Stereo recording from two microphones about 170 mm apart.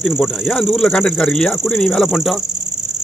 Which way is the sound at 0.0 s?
5° left (ahead or behind).